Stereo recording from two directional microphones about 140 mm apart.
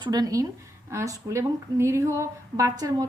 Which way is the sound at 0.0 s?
30° right (ahead or behind).